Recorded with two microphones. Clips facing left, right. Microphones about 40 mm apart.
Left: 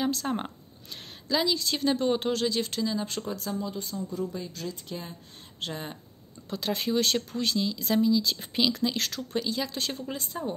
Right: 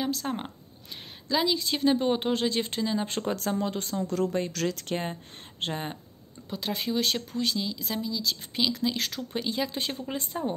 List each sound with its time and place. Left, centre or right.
0.0 s speech: centre
1.3 s speech: centre; by 3.3 s right
3.3 s speech: right
5.6 s speech: right
6.5 s speech: centre
10.1 s speech: right